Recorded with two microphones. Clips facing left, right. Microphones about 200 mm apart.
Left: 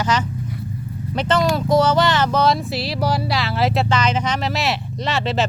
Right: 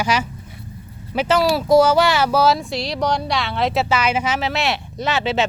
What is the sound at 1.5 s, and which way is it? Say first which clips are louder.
Music: right 5 dB; 10° right (ahead or behind).